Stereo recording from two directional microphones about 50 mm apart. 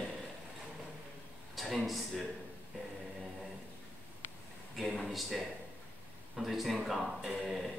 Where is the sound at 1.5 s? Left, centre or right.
Centre.